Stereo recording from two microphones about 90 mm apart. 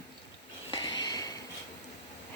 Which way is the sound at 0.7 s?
55° left (ahead or behind).